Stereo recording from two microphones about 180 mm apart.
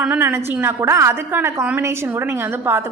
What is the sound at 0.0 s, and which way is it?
A woman's voice, 10° right (ahead or behind).